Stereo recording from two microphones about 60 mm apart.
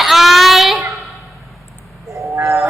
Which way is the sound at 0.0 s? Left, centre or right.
Centre.